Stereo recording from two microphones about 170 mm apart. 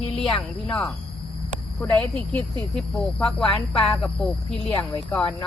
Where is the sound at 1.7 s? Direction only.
10° left (ahead or behind).